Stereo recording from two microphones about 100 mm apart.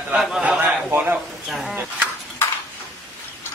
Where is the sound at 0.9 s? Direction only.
20° right (ahead or behind).